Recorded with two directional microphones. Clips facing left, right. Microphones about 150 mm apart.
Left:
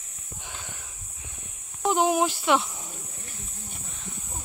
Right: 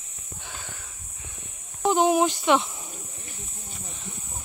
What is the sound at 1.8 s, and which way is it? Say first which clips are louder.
Speech: right 2 dB; centre (ahead or behind).